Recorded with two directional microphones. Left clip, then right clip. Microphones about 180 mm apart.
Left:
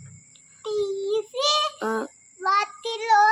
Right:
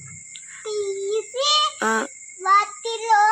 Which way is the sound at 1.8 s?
5° right (ahead or behind).